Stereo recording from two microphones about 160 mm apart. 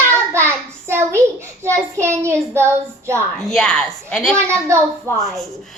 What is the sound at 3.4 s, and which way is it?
A woman's voice, 5° left (ahead or behind).